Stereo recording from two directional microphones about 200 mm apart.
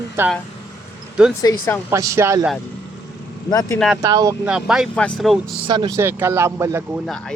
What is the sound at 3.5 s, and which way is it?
Speech, 20° left (ahead or behind).